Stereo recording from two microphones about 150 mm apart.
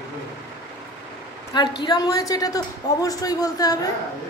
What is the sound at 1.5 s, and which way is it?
A woman's voice, 25° left (ahead or behind).